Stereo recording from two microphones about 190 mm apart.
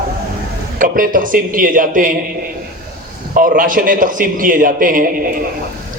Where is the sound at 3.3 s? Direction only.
45° right (ahead or behind).